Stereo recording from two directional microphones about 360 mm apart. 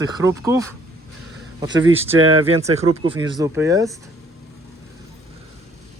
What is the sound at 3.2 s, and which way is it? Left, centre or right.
Speech, centre.